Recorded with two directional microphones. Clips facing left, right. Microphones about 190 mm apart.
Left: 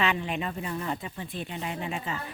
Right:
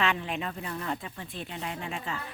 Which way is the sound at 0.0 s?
Centre (ahead or behind).